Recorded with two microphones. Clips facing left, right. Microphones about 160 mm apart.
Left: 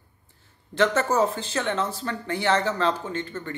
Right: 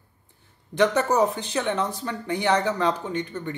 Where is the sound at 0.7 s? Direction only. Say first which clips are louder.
Right 1 dB; 15° right (ahead or behind).